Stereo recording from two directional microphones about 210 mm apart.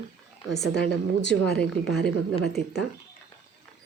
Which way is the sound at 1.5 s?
5° left (ahead or behind).